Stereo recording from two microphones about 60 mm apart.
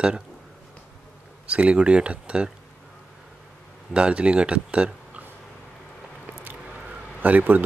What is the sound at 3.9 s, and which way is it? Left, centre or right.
Speech, centre.